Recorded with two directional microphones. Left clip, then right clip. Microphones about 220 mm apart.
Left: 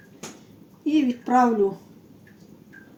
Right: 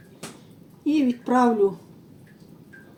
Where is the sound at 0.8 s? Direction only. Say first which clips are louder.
Even; 20° left (ahead or behind).